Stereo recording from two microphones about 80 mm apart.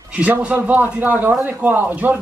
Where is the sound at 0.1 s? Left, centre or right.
Centre.